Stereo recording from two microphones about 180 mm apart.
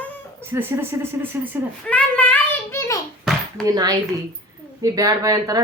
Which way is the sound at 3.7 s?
20° right (ahead or behind).